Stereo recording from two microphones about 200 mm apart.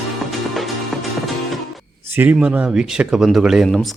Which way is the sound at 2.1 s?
10° right (ahead or behind).